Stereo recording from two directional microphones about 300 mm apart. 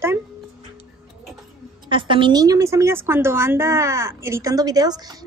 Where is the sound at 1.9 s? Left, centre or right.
Centre.